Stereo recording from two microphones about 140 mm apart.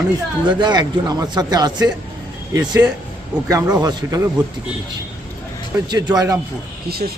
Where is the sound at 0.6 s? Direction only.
30° right (ahead or behind).